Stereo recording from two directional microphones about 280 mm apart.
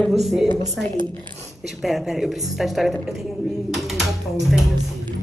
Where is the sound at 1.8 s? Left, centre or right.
Centre.